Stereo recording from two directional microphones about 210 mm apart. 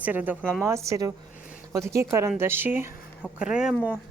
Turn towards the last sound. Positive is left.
turn(degrees=-5)  # may be behind; listen again after turning